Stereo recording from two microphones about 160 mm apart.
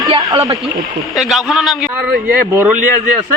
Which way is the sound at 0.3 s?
20° right (ahead or behind).